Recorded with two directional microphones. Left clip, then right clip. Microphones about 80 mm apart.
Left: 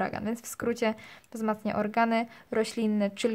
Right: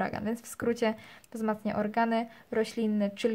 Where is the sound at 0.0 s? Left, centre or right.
Centre.